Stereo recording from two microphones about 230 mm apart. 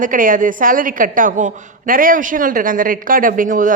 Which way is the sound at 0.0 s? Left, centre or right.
Right.